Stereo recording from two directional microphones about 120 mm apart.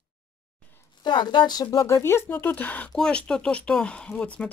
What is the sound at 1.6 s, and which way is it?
Speech, 25° left (ahead or behind).